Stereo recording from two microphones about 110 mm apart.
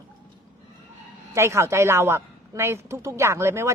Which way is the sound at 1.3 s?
25° right (ahead or behind).